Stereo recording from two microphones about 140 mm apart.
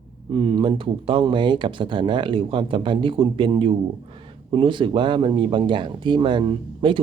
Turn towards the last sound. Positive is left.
turn(degrees=-35)  # may be behind; listen again after turning